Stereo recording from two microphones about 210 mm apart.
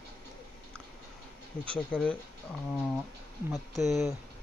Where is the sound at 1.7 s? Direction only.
5° left (ahead or behind).